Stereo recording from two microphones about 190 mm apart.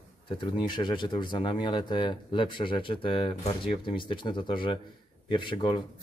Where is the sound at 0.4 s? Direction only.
25° left (ahead or behind).